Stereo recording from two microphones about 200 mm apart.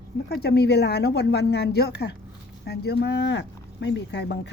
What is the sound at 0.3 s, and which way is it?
A woman's voice, 55° left (ahead or behind).